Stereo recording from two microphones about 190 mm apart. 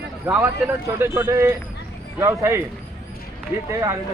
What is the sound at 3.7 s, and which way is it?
Speech, 15° right (ahead or behind).